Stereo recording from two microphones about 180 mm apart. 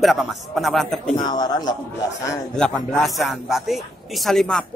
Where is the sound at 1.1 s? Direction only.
25° left (ahead or behind).